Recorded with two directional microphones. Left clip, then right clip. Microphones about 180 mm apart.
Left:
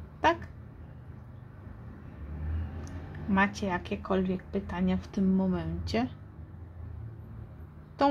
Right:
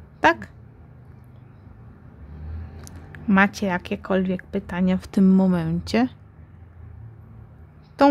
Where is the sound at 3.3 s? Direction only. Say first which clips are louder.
Right 8 dB; 50° right (ahead or behind).